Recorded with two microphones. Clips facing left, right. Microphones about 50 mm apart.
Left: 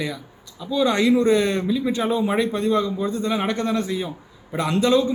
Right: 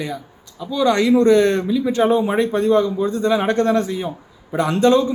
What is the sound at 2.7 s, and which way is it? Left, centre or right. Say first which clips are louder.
Speech: right 7 dB; right.